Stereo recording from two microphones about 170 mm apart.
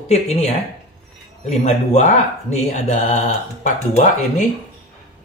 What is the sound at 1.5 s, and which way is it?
Speech, 45° left (ahead or behind).